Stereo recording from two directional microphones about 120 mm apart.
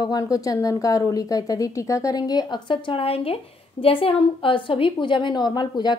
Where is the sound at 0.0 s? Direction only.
30° left (ahead or behind).